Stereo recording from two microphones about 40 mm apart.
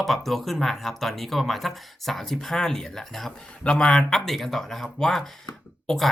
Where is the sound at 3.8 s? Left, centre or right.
Left.